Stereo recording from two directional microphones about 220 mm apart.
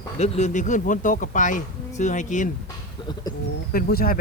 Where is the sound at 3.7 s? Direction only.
45° left (ahead or behind).